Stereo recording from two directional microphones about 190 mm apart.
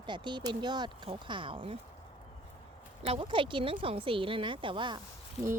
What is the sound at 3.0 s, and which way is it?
Speech, 30° right (ahead or behind).